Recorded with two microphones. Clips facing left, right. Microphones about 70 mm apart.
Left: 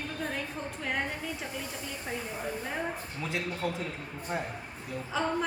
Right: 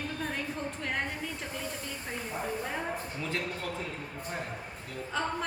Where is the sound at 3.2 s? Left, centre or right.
Centre.